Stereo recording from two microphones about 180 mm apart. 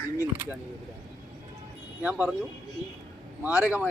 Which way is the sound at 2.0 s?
10° right (ahead or behind).